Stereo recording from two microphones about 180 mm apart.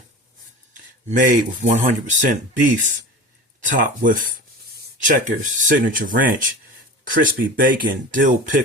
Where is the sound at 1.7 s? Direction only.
45° right (ahead or behind).